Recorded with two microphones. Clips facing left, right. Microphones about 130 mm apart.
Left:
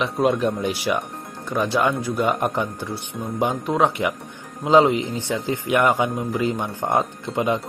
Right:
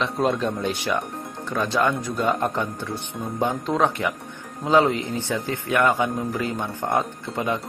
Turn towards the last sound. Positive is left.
turn(degrees=20)  # may be behind; listen again after turning